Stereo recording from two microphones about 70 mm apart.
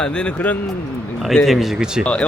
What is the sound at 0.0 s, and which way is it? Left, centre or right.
Speech, centre.